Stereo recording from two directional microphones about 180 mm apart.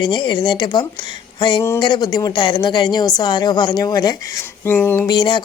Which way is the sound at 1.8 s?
25° left (ahead or behind).